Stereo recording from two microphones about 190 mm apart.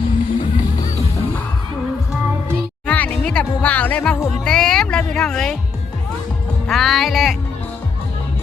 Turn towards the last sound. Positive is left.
turn(degrees=0)  # may be behind; listen again after turning